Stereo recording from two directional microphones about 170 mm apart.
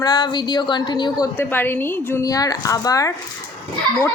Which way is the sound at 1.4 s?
10° left (ahead or behind).